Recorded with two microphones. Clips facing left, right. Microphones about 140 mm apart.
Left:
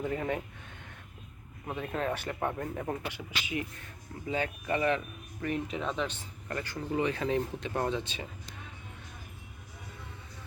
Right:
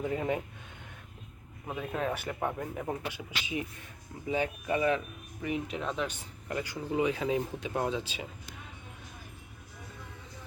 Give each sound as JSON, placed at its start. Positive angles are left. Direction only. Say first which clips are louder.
{"t": 0.0, "sound": "speech", "louder": "right 1 dB", "side_deg": -15}
{"t": 1.6, "sound": "speech", "louder": "even", "side_deg": -5}